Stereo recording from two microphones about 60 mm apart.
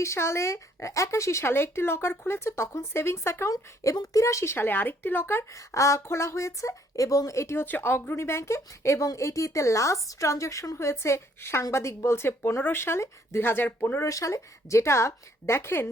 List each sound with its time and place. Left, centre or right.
0.0 s speech: left
3.5 s a woman's voice: left
4.5 s speech: left
5.5 s a woman's voice: left
7.5 s a woman's voice: left
14.1 s speech: left